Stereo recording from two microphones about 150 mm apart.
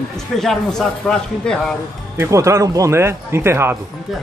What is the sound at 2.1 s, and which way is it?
Speech, 20° right (ahead or behind).